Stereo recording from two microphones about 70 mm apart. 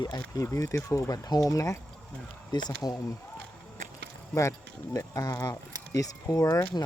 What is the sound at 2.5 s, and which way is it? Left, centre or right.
Speech, left.